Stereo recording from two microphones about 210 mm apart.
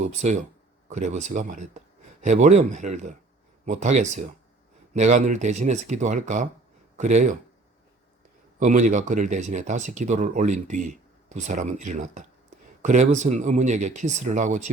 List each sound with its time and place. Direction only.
0.0 s speech: 35° right (ahead or behind)
8.5 s speech: 35° right (ahead or behind)